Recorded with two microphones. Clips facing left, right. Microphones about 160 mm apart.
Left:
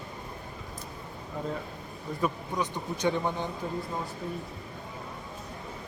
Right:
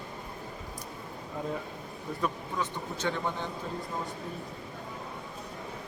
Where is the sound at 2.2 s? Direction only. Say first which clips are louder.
Left 3 dB; 15° left (ahead or behind).